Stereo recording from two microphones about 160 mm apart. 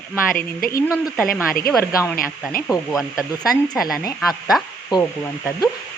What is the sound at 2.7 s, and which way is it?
Speech, 5° right (ahead or behind).